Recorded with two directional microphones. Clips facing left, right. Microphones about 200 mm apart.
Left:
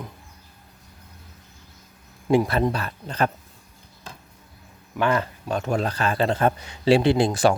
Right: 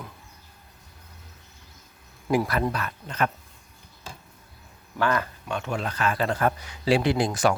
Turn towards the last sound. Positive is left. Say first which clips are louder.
# left 4 dB
turn(degrees=30)  # may be behind; listen again after turning